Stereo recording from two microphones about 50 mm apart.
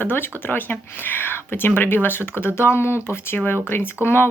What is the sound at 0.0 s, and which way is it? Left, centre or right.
Speech, left.